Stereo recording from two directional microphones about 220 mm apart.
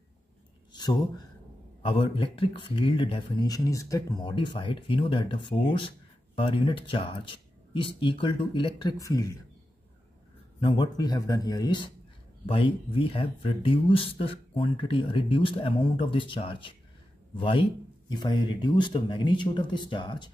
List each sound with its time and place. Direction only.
1.8 s speech: 25° left (ahead or behind)
10.6 s speech: 20° left (ahead or behind)